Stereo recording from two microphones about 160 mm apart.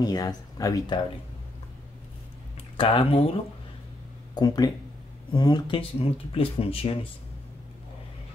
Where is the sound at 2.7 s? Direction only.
35° left (ahead or behind).